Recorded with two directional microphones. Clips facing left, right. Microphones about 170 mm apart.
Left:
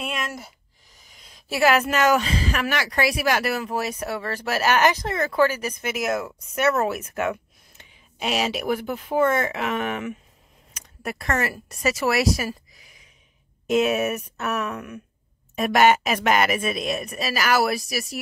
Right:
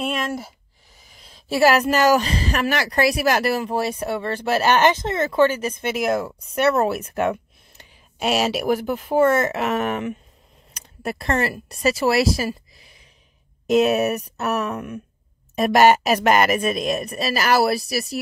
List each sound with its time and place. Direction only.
1.6 s a woman's voice: 35° right (ahead or behind)
10.7 s a sound: 30° right (ahead or behind)
11.7 s a woman's voice: 30° right (ahead or behind)